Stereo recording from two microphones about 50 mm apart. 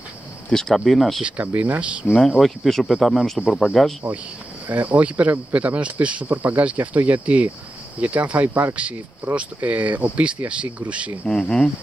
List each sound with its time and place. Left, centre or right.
0.5 s speech: centre
1.2 s speech: right
2.4 s speech: centre
3.8 s insect: centre
4.6 s speech: right
11.2 s insect: centre